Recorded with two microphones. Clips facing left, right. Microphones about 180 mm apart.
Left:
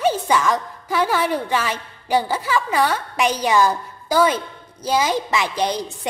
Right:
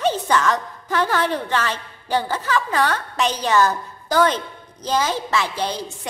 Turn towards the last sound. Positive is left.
turn(degrees=15)  # may be behind; listen again after turning